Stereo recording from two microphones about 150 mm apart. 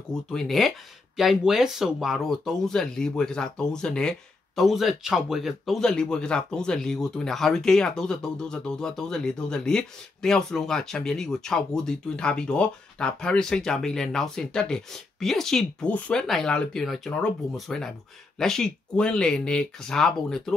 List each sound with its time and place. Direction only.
0.1 s speech: 5° left (ahead or behind)